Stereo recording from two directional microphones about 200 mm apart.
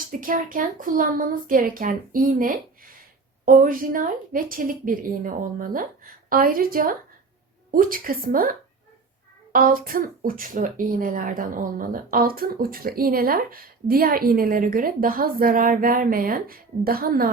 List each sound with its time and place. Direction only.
0.0 s speech: 45° right (ahead or behind)